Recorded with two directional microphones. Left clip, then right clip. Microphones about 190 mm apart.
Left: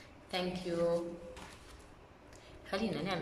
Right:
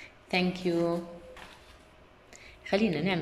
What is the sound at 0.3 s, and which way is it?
Speech, 15° right (ahead or behind).